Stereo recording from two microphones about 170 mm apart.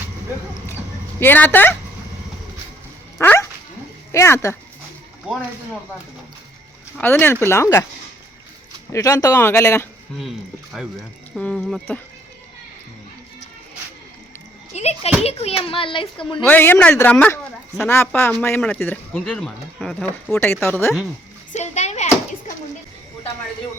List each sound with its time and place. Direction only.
1.2 s speech: 10° left (ahead or behind)
3.2 s dog: 15° left (ahead or behind)
4.1 s speech: 15° left (ahead or behind)
5.3 s speech: 5° right (ahead or behind)
7.0 s speech: 10° left (ahead or behind)
8.9 s speech: 20° left (ahead or behind)
11.3 s speech: 5° left (ahead or behind)
14.7 s a child's voice: 40° left (ahead or behind)
16.4 s speech: 10° left (ahead or behind)
21.5 s a sound: 40° left (ahead or behind)